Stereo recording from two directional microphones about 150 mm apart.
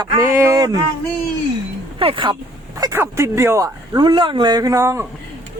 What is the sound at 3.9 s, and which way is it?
Speech, 30° right (ahead or behind).